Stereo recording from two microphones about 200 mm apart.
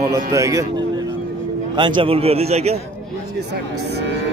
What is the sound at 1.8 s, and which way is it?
A man's voice, 25° right (ahead or behind).